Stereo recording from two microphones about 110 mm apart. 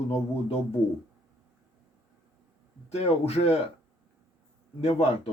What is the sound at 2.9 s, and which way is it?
Speech, 75° left (ahead or behind).